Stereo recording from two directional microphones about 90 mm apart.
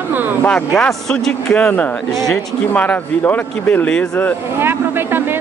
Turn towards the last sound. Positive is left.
turn(degrees=20)  # may be behind; listen again after turning